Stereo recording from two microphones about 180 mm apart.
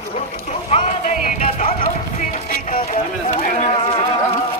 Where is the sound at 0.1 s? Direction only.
35° left (ahead or behind).